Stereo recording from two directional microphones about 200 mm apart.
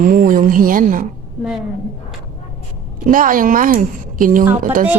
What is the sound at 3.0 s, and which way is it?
Speech, 40° right (ahead or behind).